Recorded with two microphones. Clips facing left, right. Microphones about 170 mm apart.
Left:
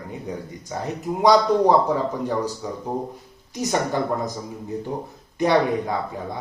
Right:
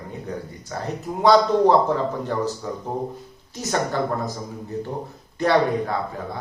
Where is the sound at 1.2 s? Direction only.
10° left (ahead or behind).